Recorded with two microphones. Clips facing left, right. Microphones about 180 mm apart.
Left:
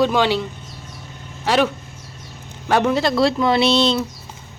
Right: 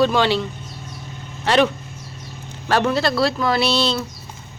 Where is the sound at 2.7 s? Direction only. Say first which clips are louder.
Left 1 dB; 15° left (ahead or behind).